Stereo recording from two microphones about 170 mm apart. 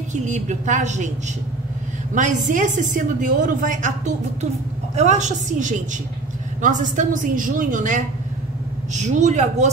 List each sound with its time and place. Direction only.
0.1 s a woman's voice: 45° right (ahead or behind)
2.1 s a woman's voice: 50° right (ahead or behind)